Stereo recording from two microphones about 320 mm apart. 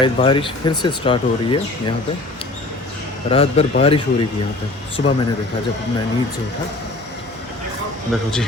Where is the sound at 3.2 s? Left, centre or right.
Centre.